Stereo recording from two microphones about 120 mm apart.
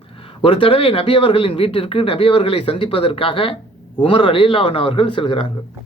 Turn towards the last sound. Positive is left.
turn(degrees=45)  # may be behind; listen again after turning